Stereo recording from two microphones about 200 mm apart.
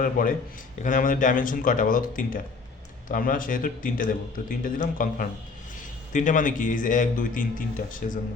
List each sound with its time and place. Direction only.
0.0 s a man's voice: 45° left (ahead or behind)